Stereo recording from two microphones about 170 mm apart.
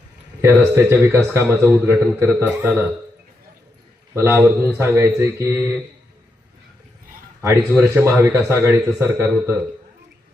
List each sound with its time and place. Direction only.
0.4 s a man's voice: 15° right (ahead or behind)
4.1 s a man's voice: 15° right (ahead or behind)
7.4 s a man's voice: 15° right (ahead or behind)